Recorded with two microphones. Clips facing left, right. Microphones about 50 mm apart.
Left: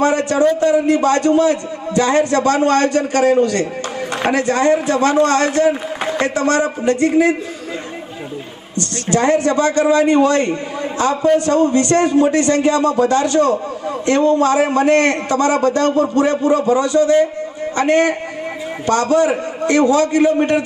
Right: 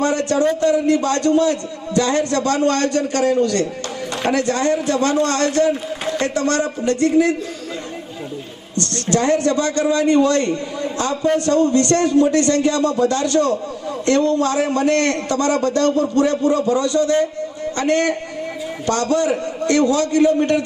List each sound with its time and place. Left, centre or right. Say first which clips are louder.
0.0 s a man's voice: left 3 dB; left
8.8 s a man's voice: left 2 dB; left